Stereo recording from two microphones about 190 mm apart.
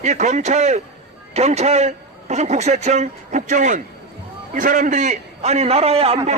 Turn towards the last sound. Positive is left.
turn(degrees=-30)  # may be behind; listen again after turning